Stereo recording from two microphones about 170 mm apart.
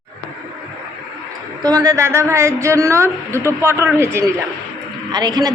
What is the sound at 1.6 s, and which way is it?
A woman's voice, 20° right (ahead or behind).